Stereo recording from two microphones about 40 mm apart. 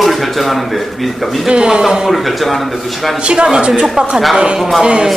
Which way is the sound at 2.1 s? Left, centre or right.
Centre.